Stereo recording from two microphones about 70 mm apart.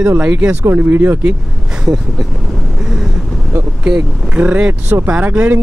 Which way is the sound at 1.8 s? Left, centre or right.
Centre.